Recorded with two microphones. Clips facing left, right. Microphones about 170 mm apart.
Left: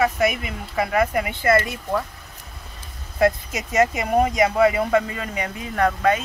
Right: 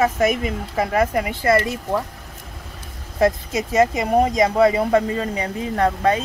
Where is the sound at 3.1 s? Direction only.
35° right (ahead or behind).